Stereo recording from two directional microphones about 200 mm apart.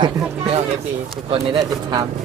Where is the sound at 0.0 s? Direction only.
30° right (ahead or behind).